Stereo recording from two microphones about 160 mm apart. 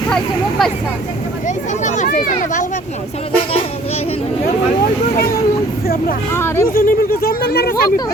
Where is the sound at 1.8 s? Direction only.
50° left (ahead or behind).